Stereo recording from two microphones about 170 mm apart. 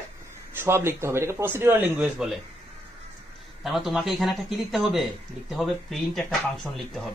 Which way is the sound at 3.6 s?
Centre (ahead or behind).